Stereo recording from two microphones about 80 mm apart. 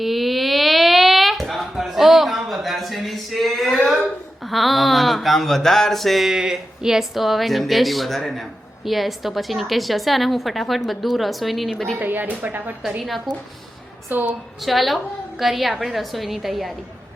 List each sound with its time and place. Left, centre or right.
0.0 s a sound: centre
4.4 s speech: centre
11.9 s speech: right
13.0 s speech: centre
14.1 s speech: right
14.6 s speech: centre